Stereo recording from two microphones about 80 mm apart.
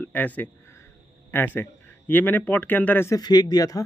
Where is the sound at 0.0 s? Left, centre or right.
Centre.